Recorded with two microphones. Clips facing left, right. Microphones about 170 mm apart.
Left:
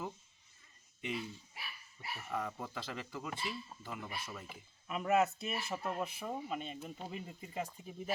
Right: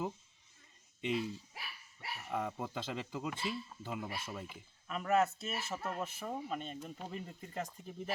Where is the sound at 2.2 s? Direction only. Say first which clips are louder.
Right 2 dB; 15° right (ahead or behind).